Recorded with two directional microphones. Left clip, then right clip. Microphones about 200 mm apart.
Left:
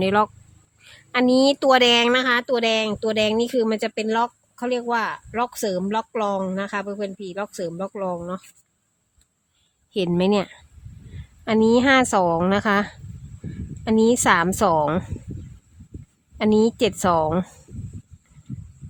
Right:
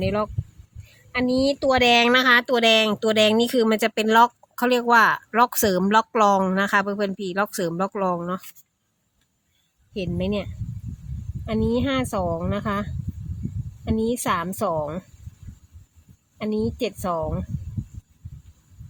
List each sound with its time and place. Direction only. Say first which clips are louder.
0.0 s a woman's voice: left 5 dB; 25° left (ahead or behind); by 8.3 s 20° right (ahead or behind)
9.9 s a woman's voice: left 7 dB; 30° left (ahead or behind)
16.4 s a woman's voice: left 7 dB; 30° left (ahead or behind)